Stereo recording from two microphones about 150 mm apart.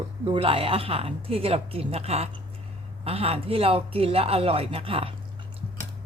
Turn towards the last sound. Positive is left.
turn(degrees=-40)  # may be behind; listen again after turning